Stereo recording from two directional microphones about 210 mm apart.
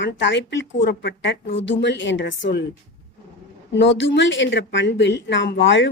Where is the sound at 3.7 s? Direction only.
60° left (ahead or behind).